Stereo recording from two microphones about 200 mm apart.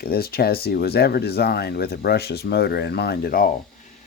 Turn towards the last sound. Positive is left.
turn(degrees=45)  # may be behind; listen again after turning